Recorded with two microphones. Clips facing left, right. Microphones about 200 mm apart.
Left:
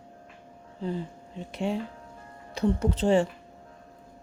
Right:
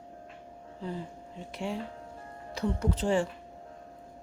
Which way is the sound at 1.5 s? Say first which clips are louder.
Left 5 dB; 20° left (ahead or behind).